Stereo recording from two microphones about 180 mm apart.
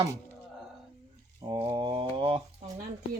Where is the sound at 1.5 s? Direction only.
30° right (ahead or behind).